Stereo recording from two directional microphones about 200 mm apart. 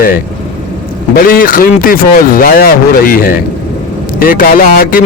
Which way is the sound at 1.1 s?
45° left (ahead or behind).